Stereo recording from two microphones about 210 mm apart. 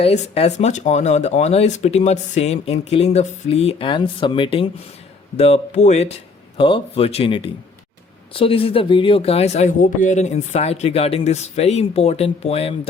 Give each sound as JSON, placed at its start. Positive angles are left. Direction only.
{"t": 0.0, "sound": "speech", "side_deg": 30}